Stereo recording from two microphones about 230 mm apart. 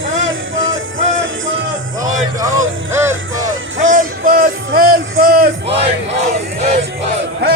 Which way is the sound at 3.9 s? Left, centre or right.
Right.